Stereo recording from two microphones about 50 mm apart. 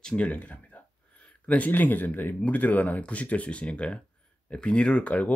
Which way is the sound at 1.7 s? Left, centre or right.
Left.